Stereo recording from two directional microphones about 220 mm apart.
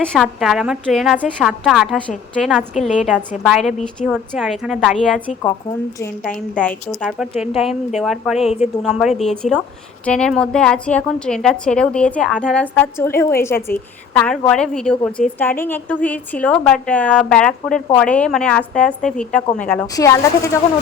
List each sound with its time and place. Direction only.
0.0 s a woman's voice: 5° left (ahead or behind)
6.6 s a woman's voice: 5° left (ahead or behind)
8.4 s a woman's voice: 30° left (ahead or behind)
8.8 s a woman's voice: centre (ahead or behind); by 20.6 s 15° left (ahead or behind)